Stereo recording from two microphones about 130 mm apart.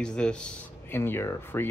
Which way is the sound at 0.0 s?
5° left (ahead or behind).